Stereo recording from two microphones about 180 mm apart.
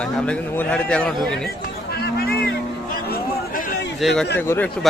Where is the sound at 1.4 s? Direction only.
60° left (ahead or behind).